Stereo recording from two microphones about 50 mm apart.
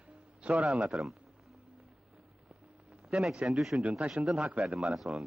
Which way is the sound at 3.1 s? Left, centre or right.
Centre.